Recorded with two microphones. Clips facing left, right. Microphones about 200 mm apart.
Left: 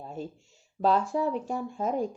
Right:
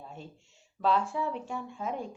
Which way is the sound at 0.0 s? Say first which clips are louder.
Left 8 dB; 40° left (ahead or behind).